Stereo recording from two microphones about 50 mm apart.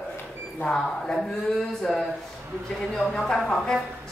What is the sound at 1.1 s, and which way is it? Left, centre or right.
Speech, centre.